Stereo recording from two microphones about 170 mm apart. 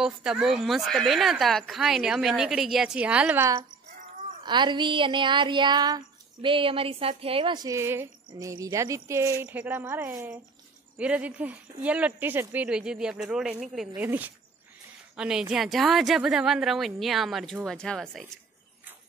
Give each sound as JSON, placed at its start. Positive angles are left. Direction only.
{"t": 0.0, "sound": "speech", "side_deg": -5}
{"t": 4.4, "sound": "a sound", "side_deg": -25}
{"t": 8.3, "sound": "a woman's voice", "side_deg": -20}